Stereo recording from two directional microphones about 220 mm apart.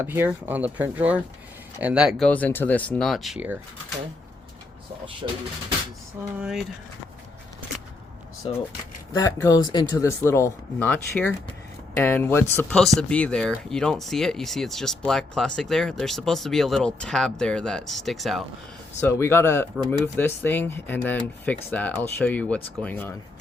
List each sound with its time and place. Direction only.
0.0 s speech: 10° right (ahead or behind)
6.2 s speech: 10° right (ahead or behind)
8.4 s speech: 25° left (ahead or behind); by 18.4 s centre (ahead or behind)
18.9 s speech: 10° left (ahead or behind)